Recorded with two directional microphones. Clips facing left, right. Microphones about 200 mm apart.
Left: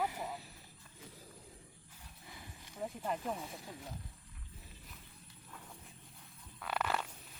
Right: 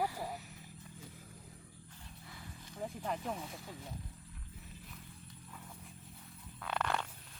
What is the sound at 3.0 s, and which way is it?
Speech, centre (ahead or behind).